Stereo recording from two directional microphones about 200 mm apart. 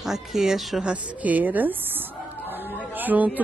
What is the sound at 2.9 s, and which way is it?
Music, 10° right (ahead or behind).